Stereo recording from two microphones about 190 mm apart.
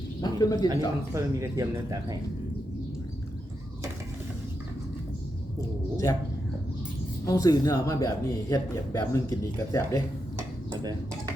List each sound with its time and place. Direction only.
0.2 s speech: 20° left (ahead or behind)
1.1 s speech: 15° right (ahead or behind)
5.5 s a woman's voice: 15° left (ahead or behind)
7.3 s speech: 20° left (ahead or behind)